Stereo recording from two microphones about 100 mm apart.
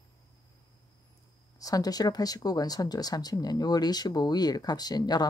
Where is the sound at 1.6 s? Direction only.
35° left (ahead or behind).